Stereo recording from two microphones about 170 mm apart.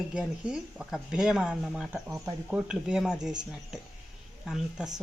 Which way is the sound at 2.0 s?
15° right (ahead or behind).